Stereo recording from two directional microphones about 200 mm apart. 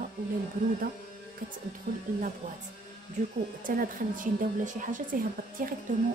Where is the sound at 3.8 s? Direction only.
45° right (ahead or behind).